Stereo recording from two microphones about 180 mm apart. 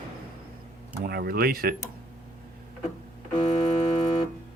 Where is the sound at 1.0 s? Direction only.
60° right (ahead or behind).